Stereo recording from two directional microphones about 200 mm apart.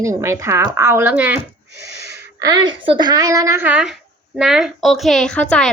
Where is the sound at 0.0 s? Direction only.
15° right (ahead or behind).